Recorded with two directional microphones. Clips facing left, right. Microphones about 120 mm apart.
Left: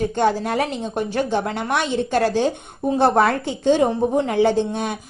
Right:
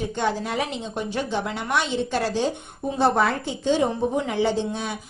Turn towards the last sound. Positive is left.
turn(degrees=55)  # may be behind; listen again after turning